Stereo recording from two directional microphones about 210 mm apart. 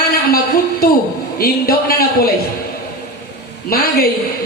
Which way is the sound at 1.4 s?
45° left (ahead or behind).